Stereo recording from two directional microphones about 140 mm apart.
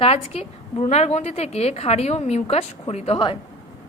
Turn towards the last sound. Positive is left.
turn(degrees=40)  # may be behind; listen again after turning